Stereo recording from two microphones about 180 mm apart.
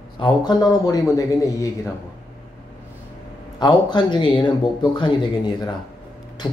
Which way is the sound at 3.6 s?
25° left (ahead or behind).